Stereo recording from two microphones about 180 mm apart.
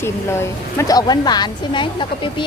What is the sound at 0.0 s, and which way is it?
Speech, 15° left (ahead or behind).